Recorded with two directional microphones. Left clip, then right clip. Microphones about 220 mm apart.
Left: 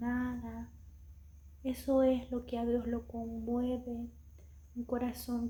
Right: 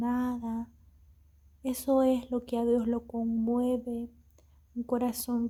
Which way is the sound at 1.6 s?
50° right (ahead or behind).